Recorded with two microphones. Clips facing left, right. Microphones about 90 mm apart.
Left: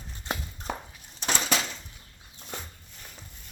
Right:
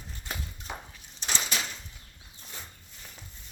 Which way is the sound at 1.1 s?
55° left (ahead or behind).